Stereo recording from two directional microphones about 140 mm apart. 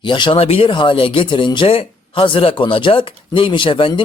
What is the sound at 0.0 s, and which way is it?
Speech, 35° left (ahead or behind).